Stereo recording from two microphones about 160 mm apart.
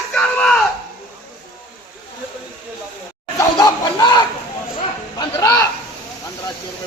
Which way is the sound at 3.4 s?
25° left (ahead or behind).